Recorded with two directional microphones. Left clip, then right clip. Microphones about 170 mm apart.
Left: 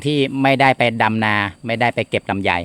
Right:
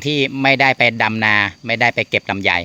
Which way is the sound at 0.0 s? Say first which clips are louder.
Right 1 dB; 20° left (ahead or behind).